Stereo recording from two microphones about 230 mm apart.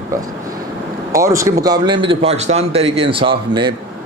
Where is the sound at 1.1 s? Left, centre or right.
Centre.